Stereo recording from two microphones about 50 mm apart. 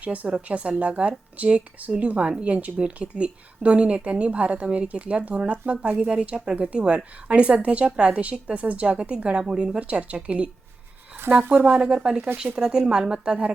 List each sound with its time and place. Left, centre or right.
0.0 s speech: right
11.3 s a woman's voice: right
11.7 s speech: centre